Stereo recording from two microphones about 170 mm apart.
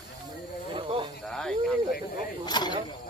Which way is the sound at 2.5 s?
25° left (ahead or behind).